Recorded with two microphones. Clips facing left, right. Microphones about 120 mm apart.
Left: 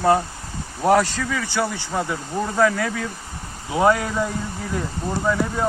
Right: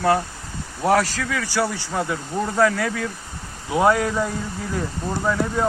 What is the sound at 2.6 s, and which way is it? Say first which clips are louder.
Speech: even; centre (ahead or behind).